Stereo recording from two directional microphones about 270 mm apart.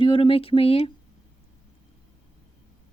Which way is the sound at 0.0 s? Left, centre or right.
Centre.